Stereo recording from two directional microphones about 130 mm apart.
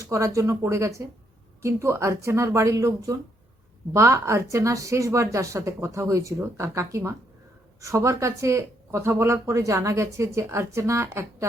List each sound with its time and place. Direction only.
0.0 s speech: 25° right (ahead or behind)